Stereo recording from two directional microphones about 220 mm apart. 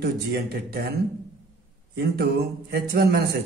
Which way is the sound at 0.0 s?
45° right (ahead or behind).